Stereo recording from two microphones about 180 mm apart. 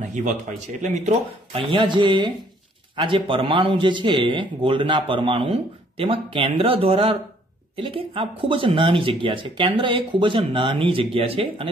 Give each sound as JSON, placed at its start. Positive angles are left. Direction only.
{"t": 0.1, "sound": "speech", "side_deg": -45}